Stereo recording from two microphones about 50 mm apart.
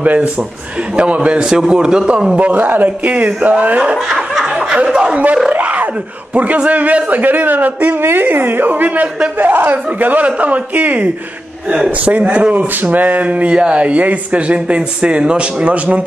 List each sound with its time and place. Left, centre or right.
0.0 s a man's voice: right; by 2.3 s centre
2.3 s a man's voice: right
4.8 s a man's voice: centre
5.1 s speech: right
5.5 s a sound: right
6.3 s a man's voice: right